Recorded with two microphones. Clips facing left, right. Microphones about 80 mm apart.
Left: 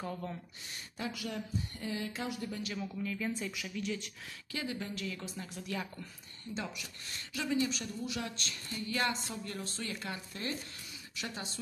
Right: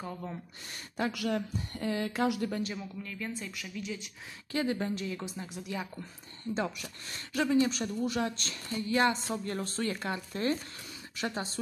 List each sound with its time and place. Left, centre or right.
0.0 s speech: centre
0.9 s speech: right
2.8 s speech: centre
4.5 s speech: right
4.9 s a woman's voice: right
6.5 s speech: right
9.3 s speech: right